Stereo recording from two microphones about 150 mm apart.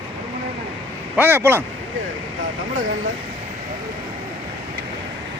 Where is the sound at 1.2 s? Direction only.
15° right (ahead or behind).